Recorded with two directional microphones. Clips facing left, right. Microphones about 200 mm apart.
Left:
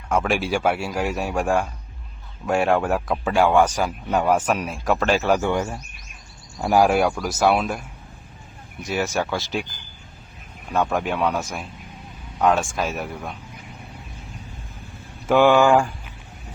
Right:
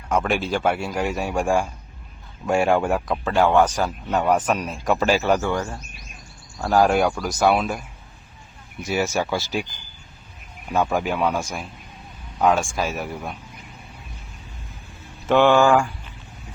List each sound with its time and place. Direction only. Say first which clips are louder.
0.1 s speech: even; 5° left (ahead or behind)
3.2 s a man's voice: even; 10° left (ahead or behind); by 5.3 s 5° right (ahead or behind)
5.4 s a man's voice: left 2 dB; 20° left (ahead or behind); by 7.8 s centre (ahead or behind)
8.8 s speech: right 1 dB; 5° right (ahead or behind)
10.7 s speech: right 1 dB; 5° right (ahead or behind)
15.3 s speech: even; 5° left (ahead or behind)